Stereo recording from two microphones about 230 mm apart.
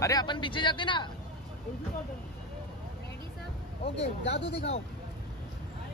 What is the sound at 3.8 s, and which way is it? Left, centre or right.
Speech, left.